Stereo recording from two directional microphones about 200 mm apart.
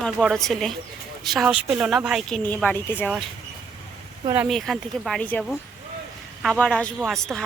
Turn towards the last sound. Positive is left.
turn(degrees=0)  # may be behind; listen again after turning